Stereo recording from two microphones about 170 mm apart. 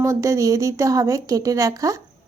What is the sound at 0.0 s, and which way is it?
Speech, 20° right (ahead or behind).